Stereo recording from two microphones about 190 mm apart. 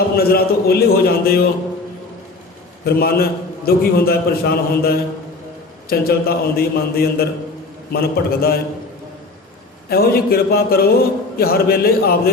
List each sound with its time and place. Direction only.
0.2 s a man's voice: 55° left (ahead or behind)
2.8 s a man's voice: 55° left (ahead or behind)
9.9 s a man's voice: 55° left (ahead or behind)